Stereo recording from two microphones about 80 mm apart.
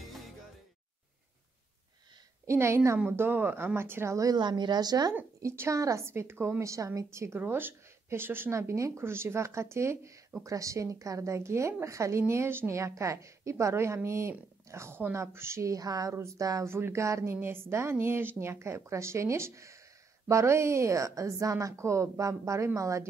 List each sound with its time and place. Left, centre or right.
0.0 s music: centre
2.4 s a woman's voice: right
3.1 s speech: right
4.4 s speech: right
5.4 s a woman's voice: right
16.6 s a woman's voice: right